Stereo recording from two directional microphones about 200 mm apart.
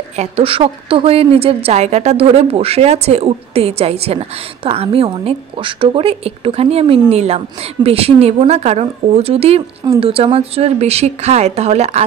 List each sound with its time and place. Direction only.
0.1 s a woman's voice: 30° right (ahead or behind)